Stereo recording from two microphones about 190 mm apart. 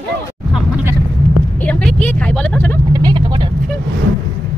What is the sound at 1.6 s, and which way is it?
Vehicle, 5° left (ahead or behind).